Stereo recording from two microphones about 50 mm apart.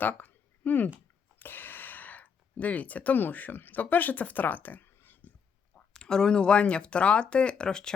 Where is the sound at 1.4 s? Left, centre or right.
Left.